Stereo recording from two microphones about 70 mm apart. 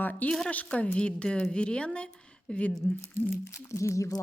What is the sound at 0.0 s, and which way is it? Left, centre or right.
Speech, left.